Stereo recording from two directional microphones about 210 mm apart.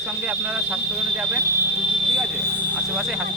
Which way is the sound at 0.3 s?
5° right (ahead or behind).